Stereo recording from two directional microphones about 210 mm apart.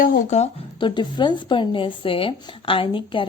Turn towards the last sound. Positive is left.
turn(degrees=25)  # may be behind; listen again after turning